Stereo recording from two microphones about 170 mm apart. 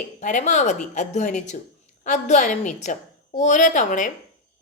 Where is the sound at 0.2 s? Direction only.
45° left (ahead or behind).